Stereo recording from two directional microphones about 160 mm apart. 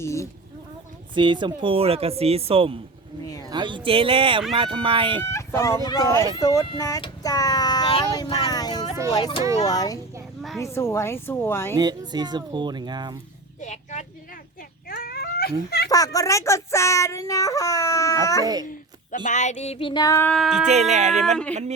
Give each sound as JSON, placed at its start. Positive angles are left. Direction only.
{"t": 0.0, "sound": "speech", "side_deg": 20}
{"t": 1.1, "sound": "speech", "side_deg": -30}
{"t": 5.2, "sound": "speech", "side_deg": 15}
{"t": 11.8, "sound": "speech", "side_deg": -25}
{"t": 13.6, "sound": "speech", "side_deg": 50}
{"t": 14.8, "sound": "cat", "side_deg": 65}
{"t": 15.9, "sound": "speech", "side_deg": 20}
{"t": 18.4, "sound": "speech", "side_deg": -25}
{"t": 19.2, "sound": "music", "side_deg": 50}
{"t": 20.1, "sound": "speech", "side_deg": 5}
{"t": 20.7, "sound": "speech", "side_deg": -45}